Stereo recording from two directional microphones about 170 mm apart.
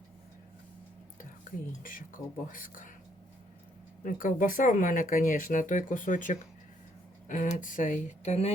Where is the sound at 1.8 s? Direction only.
55° left (ahead or behind).